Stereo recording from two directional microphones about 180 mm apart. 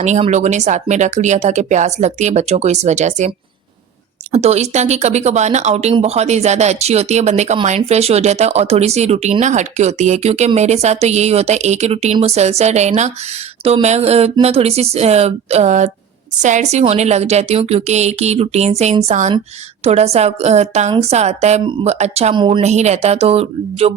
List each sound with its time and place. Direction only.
0.0 s speech: 40° right (ahead or behind)
22.6 s speech: 40° right (ahead or behind)